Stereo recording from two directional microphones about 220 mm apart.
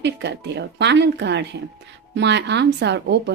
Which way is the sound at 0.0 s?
50° right (ahead or behind).